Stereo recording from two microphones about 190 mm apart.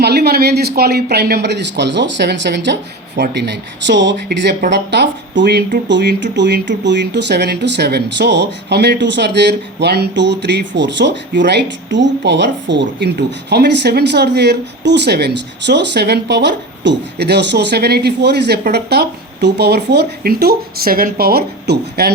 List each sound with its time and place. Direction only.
0.0 s speech: 60° right (ahead or behind)